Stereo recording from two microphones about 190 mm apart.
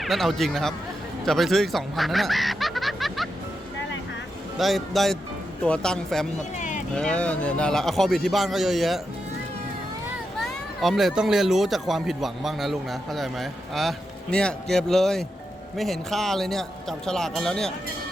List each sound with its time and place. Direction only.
0.0 s speech: centre (ahead or behind)
4.5 s speech: centre (ahead or behind)
6.6 s boat: 40° left (ahead or behind)
6.9 s speech: 5° left (ahead or behind)
10.4 s speech: centre (ahead or behind)